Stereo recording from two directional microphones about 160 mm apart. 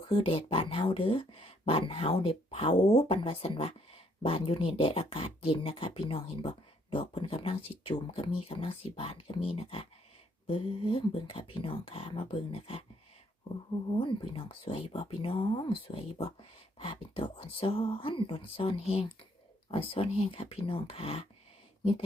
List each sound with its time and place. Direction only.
0.0 s speech: 35° left (ahead or behind)
13.9 s speech: 30° left (ahead or behind)